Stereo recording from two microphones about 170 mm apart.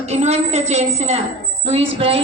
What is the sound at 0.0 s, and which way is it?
A woman's voice, 40° right (ahead or behind).